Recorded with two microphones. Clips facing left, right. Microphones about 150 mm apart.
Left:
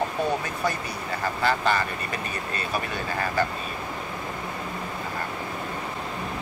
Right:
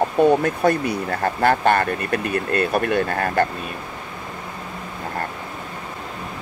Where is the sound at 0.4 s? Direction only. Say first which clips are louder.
Right 9 dB; 60° right (ahead or behind).